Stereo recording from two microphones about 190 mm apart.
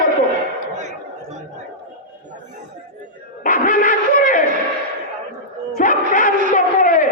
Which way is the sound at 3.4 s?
45° left (ahead or behind).